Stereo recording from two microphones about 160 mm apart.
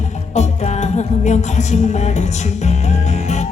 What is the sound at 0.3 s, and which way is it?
Music, 45° left (ahead or behind).